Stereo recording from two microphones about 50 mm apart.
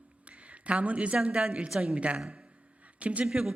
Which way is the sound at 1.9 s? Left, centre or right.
Right.